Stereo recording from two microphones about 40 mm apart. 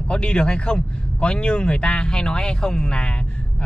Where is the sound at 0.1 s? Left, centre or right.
Left.